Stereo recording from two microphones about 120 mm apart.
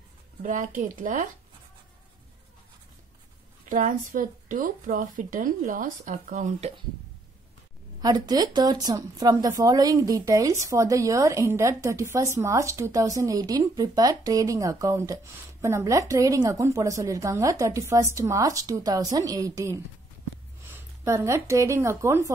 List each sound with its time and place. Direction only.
0.4 s speech: 90° right
3.6 s speech: 90° right
8.0 s speech: 35° right (ahead or behind)